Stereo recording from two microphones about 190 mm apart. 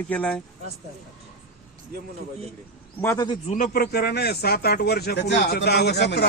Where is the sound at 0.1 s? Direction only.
5° left (ahead or behind).